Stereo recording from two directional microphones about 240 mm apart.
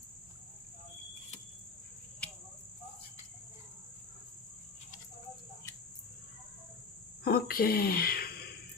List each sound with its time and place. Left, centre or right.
2.2 s cricket: centre
7.3 s speech: left